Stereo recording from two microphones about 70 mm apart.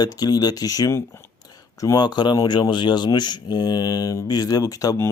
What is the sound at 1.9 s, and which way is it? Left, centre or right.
Speech, left.